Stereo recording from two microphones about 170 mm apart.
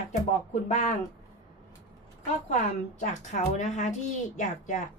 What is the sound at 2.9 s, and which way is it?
A woman's voice, 45° left (ahead or behind).